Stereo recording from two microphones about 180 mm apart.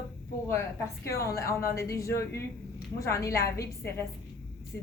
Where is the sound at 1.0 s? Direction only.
15° left (ahead or behind).